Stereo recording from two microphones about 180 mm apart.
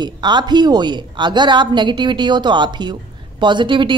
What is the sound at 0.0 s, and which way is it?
A woman's voice, 25° right (ahead or behind).